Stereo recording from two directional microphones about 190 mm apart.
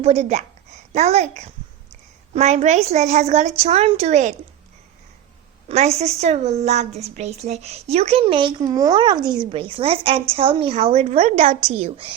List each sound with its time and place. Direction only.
0.0 s a child's voice: 35° right (ahead or behind)
5.6 s a woman's voice: 35° right (ahead or behind)